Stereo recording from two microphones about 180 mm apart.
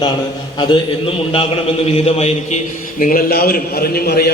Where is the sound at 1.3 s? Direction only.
30° left (ahead or behind).